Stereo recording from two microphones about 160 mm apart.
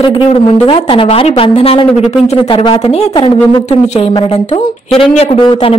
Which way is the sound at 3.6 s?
45° left (ahead or behind).